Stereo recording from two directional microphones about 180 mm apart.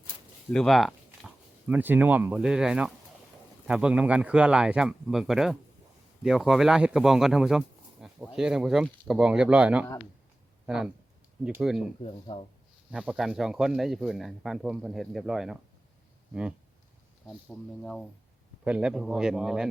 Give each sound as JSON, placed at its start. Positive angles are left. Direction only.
{"t": 0.5, "sound": "speech", "side_deg": 0}
{"t": 12.3, "sound": "speech", "side_deg": 25}
{"t": 12.9, "sound": "speech", "side_deg": -5}